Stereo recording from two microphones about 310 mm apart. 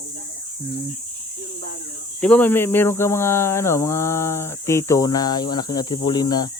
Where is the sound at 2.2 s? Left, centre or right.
Centre.